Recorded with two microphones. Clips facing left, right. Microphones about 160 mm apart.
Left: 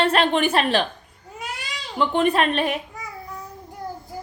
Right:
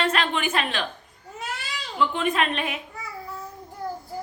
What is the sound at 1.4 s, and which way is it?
Baby cry, 15° left (ahead or behind).